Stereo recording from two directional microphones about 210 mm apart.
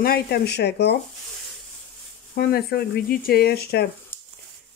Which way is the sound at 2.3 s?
50° left (ahead or behind).